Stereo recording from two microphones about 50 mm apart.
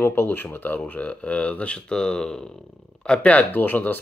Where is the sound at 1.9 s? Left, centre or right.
Centre.